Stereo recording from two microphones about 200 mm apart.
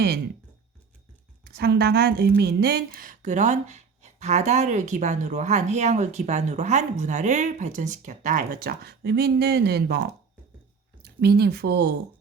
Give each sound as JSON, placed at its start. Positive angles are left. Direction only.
{"t": 1.5, "sound": "a woman's voice", "side_deg": -55}